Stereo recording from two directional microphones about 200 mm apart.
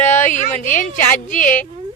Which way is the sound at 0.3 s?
40° left (ahead or behind).